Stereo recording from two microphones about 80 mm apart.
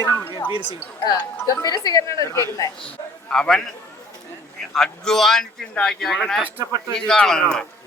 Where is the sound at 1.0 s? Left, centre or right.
Left.